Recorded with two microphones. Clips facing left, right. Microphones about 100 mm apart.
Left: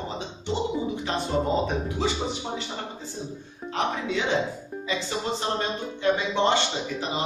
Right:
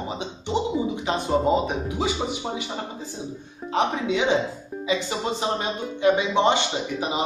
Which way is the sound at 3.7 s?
15° right (ahead or behind).